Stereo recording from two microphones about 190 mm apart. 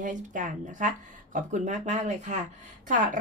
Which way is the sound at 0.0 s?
40° right (ahead or behind).